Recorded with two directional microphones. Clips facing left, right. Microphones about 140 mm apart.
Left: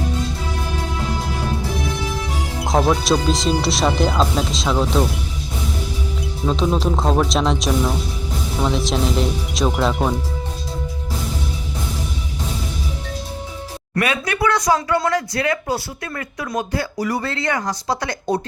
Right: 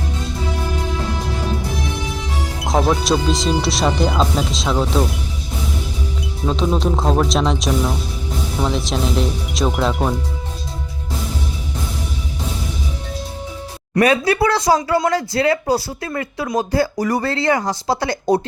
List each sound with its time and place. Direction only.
2.6 s speech: centre (ahead or behind)
6.4 s speech: centre (ahead or behind)
14.0 s speech: 35° right (ahead or behind)